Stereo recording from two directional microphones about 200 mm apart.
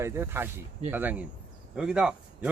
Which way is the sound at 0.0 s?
10° right (ahead or behind).